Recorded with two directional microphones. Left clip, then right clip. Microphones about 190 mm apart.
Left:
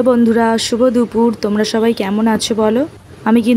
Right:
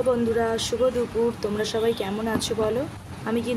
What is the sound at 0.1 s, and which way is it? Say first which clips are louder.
Speech: left 9 dB; 50° left (ahead or behind).